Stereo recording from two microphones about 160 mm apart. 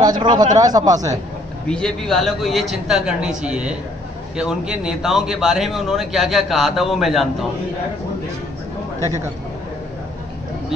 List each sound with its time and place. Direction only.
0.0 s speech: 25° right (ahead or behind)
1.7 s a man's voice: 5° left (ahead or behind)